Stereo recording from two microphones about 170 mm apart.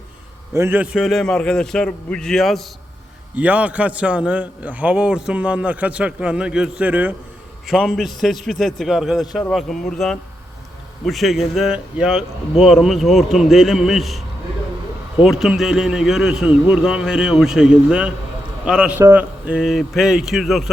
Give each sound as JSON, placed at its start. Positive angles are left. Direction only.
{"t": 0.5, "sound": "a man's voice", "side_deg": -15}
{"t": 15.2, "sound": "a man's voice", "side_deg": 0}